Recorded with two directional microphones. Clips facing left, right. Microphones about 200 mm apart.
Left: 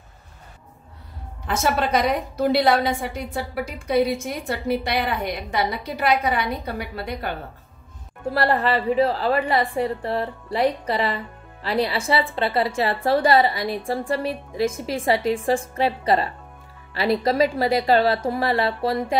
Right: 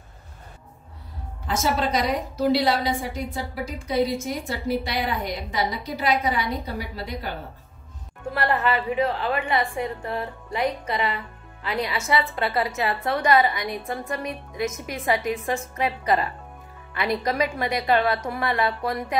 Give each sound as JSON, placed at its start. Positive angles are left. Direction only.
{"t": 1.5, "sound": "a woman's voice", "side_deg": 60}
{"t": 8.3, "sound": "a woman's voice", "side_deg": 35}